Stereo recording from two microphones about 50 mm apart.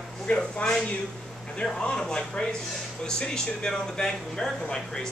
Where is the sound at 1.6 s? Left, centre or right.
Centre.